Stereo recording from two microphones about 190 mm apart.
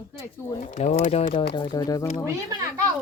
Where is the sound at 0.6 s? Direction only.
40° left (ahead or behind); by 2.0 s 20° left (ahead or behind).